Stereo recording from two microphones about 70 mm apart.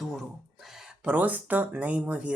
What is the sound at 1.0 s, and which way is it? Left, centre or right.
Speech, right.